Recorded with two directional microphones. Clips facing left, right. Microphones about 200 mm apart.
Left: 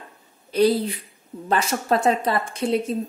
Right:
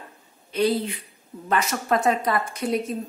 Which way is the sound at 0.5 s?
35° left (ahead or behind).